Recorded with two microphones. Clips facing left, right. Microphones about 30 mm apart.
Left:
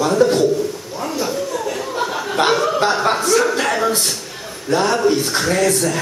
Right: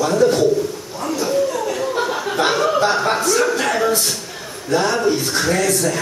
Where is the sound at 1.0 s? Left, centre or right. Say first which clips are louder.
Right 3 dB; centre.